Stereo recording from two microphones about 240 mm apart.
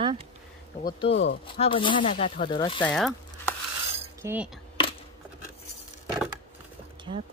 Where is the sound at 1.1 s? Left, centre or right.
Left.